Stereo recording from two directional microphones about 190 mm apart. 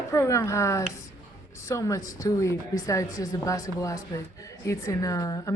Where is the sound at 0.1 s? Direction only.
15° left (ahead or behind).